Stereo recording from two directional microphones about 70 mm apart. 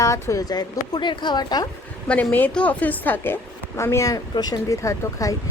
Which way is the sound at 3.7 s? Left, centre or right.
Left.